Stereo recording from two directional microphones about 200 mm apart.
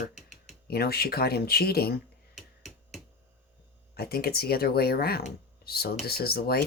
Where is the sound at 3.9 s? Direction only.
50° left (ahead or behind).